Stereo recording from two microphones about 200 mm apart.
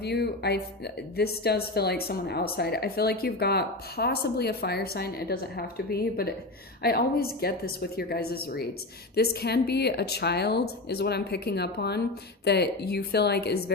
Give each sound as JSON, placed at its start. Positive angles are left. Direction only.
{"t": 0.0, "sound": "speech", "side_deg": 55}